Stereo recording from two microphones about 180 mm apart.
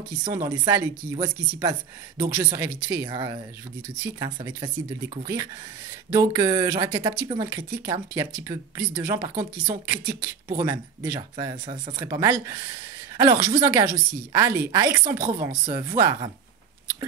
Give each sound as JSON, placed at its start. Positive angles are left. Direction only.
{"t": 0.3, "sound": "a woman's voice", "side_deg": -15}